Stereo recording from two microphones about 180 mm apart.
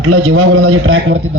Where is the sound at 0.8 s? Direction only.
90° right.